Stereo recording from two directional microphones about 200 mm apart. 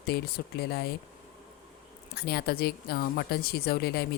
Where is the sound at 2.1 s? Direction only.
50° left (ahead or behind).